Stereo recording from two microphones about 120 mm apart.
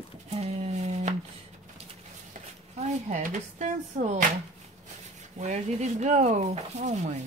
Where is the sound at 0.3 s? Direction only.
65° right (ahead or behind).